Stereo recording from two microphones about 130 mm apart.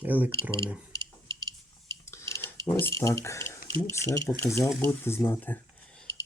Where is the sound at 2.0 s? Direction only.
20° left (ahead or behind).